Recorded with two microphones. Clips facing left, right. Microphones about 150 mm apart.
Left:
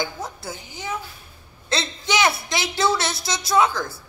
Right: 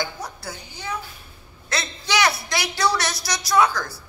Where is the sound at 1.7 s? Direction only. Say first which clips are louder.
Left 2 dB; 25° left (ahead or behind).